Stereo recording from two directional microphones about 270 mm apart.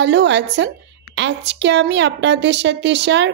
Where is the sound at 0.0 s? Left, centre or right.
Right.